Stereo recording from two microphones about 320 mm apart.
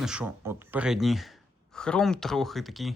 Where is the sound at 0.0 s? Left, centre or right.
Centre.